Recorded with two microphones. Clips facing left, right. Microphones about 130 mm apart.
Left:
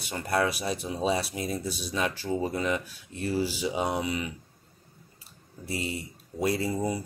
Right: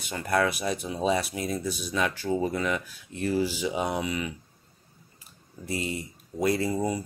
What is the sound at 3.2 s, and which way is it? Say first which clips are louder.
Speech: right 2 dB; 45° right (ahead or behind).